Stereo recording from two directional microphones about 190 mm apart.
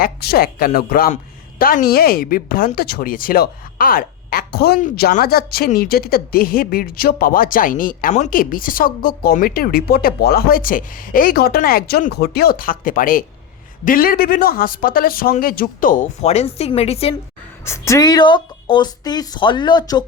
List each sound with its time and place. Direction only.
0.0 s a woman's voice: 55° left (ahead or behind); by 17.2 s 30° left (ahead or behind)
17.7 s speech: 15° left (ahead or behind)